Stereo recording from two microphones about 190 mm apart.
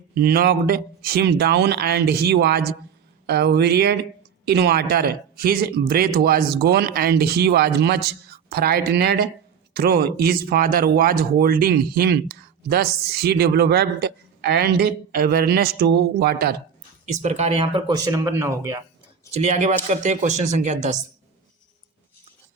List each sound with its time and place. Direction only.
0.1 s speech: 55° right (ahead or behind)
17.1 s speech: 40° right (ahead or behind); by 18.8 s 15° right (ahead or behind)
19.3 s speech: 35° right (ahead or behind)